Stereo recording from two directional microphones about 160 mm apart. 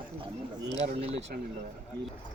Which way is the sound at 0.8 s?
40° right (ahead or behind).